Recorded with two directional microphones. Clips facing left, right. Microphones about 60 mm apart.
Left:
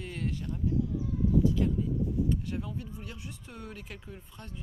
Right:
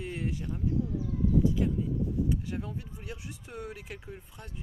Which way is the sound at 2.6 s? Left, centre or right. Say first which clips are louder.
Left 1 dB; right.